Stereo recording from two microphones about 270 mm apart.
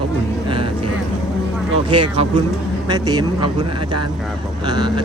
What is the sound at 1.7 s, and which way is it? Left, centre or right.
Speech, centre.